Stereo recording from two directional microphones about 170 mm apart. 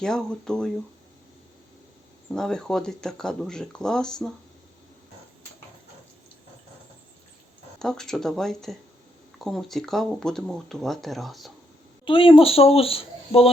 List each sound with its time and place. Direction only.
0.0 s speech: 5° left (ahead or behind)
2.3 s speech: 5° left (ahead or behind)
7.8 s speech: 5° left (ahead or behind)
12.0 s a woman's voice: 30° left (ahead or behind)